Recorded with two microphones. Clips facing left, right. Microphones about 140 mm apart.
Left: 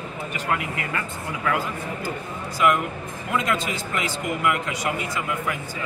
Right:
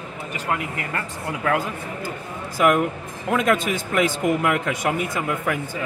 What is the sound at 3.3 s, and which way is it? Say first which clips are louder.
Speech: right 5 dB; 55° right (ahead or behind).